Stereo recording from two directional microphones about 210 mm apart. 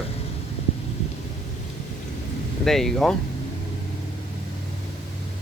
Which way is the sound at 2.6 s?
Centre (ahead or behind).